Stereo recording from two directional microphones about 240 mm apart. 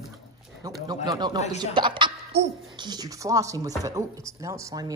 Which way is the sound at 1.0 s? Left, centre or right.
Centre.